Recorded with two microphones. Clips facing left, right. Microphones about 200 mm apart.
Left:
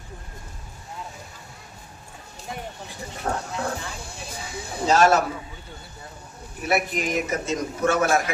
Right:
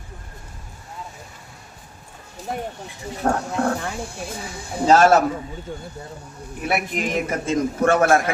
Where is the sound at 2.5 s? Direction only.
50° right (ahead or behind).